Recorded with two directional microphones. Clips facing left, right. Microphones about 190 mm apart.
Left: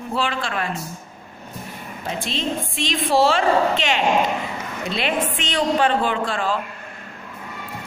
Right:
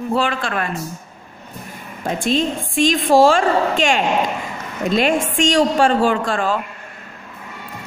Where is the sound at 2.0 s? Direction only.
50° right (ahead or behind).